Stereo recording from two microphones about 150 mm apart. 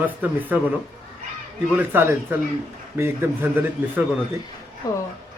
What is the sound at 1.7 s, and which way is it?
Speech, 15° right (ahead or behind).